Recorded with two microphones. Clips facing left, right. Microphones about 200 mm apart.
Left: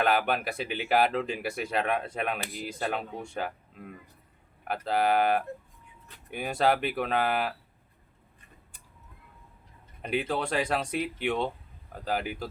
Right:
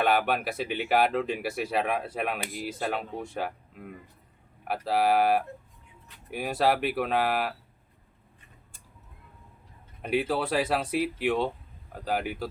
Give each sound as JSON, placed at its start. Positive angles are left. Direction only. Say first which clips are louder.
{"t": 0.0, "sound": "speech", "louder": "right 1 dB", "side_deg": 0}
{"t": 10.0, "sound": "speech", "louder": "right 2 dB", "side_deg": -5}